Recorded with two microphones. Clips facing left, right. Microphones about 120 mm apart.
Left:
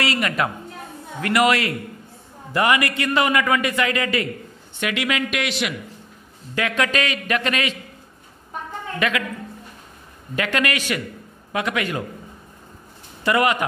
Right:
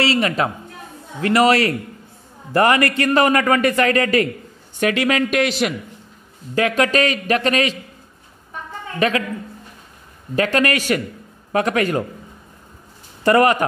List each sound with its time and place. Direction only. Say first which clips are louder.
0.0 s a man's voice: right 4 dB; 30° right (ahead or behind)
2.5 s a man's voice: right 4 dB; 45° right (ahead or behind)
9.0 s a man's voice: right 5 dB; 35° right (ahead or behind)
10.3 s a man's voice: right 5 dB; 40° right (ahead or behind)
13.2 s a man's voice: right 5 dB; 40° right (ahead or behind)